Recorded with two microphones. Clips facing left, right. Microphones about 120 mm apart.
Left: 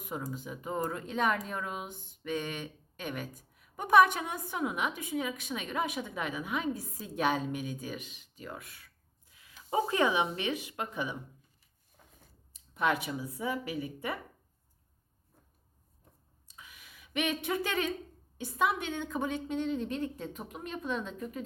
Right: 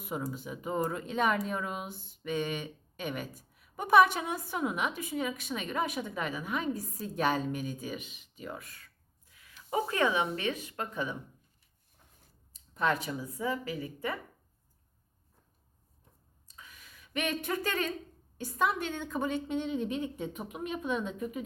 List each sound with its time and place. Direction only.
0.0 s a woman's voice: 5° right (ahead or behind)
9.3 s speech: 20° left (ahead or behind)
12.7 s speech: 5° left (ahead or behind)
16.6 s a sound: 5° left (ahead or behind)
18.3 s a woman's voice: centre (ahead or behind)